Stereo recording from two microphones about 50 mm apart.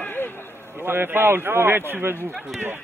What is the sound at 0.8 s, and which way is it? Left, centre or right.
A man's voice, right.